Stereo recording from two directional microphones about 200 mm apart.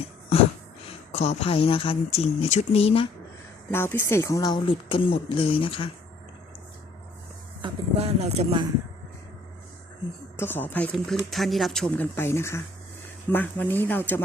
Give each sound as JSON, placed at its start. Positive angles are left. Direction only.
{"t": 0.9, "sound": "speech", "side_deg": 30}
{"t": 3.7, "sound": "speech", "side_deg": 10}
{"t": 7.6, "sound": "speech", "side_deg": -30}
{"t": 10.3, "sound": "a woman's voice", "side_deg": 10}